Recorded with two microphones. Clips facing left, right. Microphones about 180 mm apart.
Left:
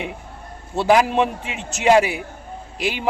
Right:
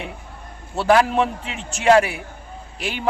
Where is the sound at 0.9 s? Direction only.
15° left (ahead or behind).